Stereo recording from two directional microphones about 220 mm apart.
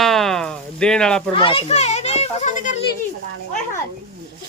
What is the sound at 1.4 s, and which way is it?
A child's voice, 25° left (ahead or behind).